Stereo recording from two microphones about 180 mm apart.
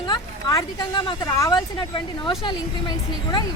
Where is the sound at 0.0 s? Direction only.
25° left (ahead or behind).